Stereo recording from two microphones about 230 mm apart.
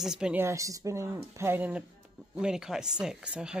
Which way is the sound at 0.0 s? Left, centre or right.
Centre.